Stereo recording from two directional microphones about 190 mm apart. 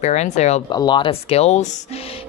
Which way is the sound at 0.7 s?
25° left (ahead or behind).